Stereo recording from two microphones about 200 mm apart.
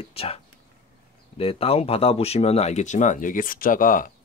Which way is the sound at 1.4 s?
30° left (ahead or behind).